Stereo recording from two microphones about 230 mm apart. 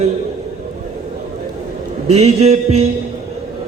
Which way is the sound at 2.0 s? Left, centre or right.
Right.